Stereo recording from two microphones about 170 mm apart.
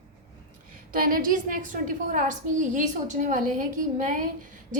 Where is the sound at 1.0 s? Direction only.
55° right (ahead or behind).